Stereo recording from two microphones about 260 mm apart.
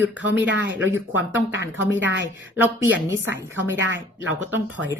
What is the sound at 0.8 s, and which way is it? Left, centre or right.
Speech, centre.